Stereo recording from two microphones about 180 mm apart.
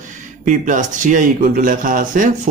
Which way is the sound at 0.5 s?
45° right (ahead or behind).